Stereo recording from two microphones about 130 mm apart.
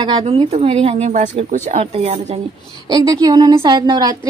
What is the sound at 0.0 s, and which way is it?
A woman's voice, 50° right (ahead or behind).